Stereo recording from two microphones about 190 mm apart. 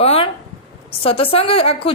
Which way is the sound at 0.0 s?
30° left (ahead or behind).